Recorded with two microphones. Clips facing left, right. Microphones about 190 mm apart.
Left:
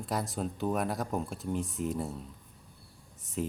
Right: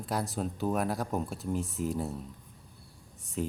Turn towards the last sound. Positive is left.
turn(degrees=0)  # may be behind; listen again after turning